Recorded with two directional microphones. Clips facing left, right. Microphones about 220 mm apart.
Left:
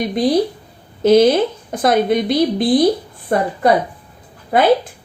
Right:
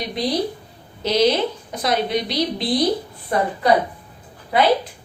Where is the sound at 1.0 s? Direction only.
50° left (ahead or behind).